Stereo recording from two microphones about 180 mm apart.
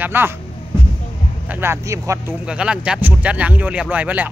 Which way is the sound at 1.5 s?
15° right (ahead or behind).